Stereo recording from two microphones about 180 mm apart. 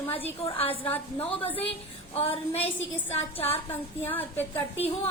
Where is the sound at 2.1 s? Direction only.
35° left (ahead or behind).